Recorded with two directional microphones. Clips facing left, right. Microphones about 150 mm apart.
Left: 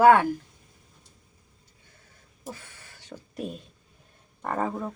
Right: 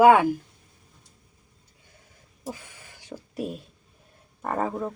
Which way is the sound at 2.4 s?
10° right (ahead or behind).